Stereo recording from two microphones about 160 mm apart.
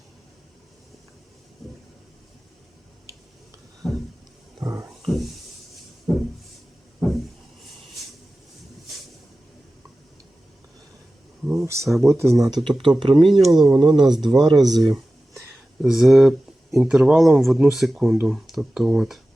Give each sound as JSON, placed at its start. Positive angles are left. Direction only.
{"t": 3.8, "sound": "a sound", "side_deg": 0}
{"t": 4.6, "sound": "wild animals", "side_deg": -20}
{"t": 6.1, "sound": "a sound", "side_deg": 0}
{"t": 11.6, "sound": "speech", "side_deg": -15}
{"t": 12.6, "sound": "speech", "side_deg": -30}
{"t": 13.4, "sound": "speech", "side_deg": 0}
{"t": 13.7, "sound": "speech", "side_deg": -30}
{"t": 15.8, "sound": "speech", "side_deg": -5}